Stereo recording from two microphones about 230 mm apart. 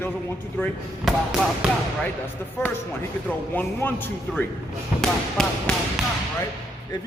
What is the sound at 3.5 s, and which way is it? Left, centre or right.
Speech, centre.